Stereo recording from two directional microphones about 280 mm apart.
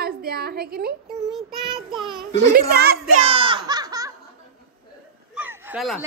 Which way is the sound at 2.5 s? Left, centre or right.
Right.